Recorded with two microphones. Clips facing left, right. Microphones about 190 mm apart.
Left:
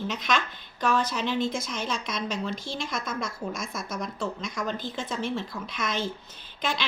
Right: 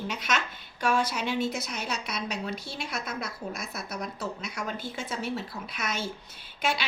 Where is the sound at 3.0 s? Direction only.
65° right (ahead or behind).